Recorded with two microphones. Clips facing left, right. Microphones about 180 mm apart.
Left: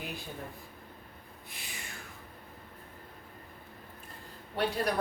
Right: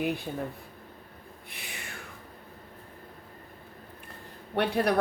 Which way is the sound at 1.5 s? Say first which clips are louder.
Right 3 dB; 65° right (ahead or behind).